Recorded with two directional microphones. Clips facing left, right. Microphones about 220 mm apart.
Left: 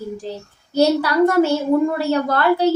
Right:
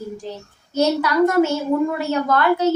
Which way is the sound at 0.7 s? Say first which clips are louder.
Left 2 dB; 35° left (ahead or behind).